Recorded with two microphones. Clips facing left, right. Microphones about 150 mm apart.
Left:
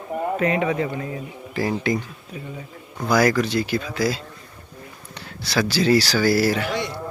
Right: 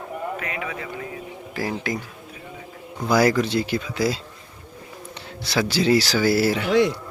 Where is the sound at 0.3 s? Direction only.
30° left (ahead or behind).